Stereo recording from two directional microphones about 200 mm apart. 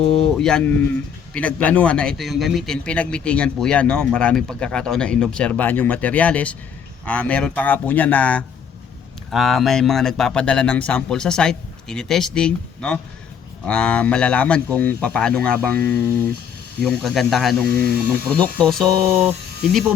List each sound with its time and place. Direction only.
0.0 s a man's voice: centre (ahead or behind)
17.7 s speech: 50° right (ahead or behind)
18.3 s a man's voice: 5° left (ahead or behind)